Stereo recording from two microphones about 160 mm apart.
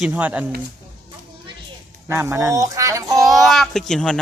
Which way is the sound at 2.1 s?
15° right (ahead or behind).